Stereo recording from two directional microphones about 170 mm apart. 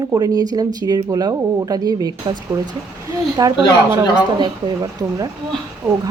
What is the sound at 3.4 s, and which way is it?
A woman's voice, 25° right (ahead or behind).